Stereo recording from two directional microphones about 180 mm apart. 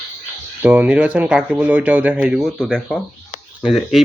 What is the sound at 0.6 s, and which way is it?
Speech, 10° right (ahead or behind).